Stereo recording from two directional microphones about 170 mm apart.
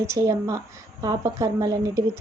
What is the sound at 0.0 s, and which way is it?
A woman's voice, 15° right (ahead or behind).